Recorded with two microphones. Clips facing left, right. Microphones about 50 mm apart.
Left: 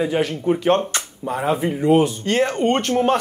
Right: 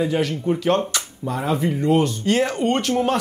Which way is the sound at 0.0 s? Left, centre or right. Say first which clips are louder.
Left 1 dB; centre.